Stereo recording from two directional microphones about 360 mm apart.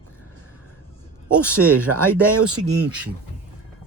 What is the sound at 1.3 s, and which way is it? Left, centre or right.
Speech, centre.